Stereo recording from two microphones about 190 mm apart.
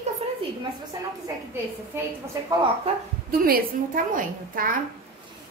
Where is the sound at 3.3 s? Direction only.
50° right (ahead or behind).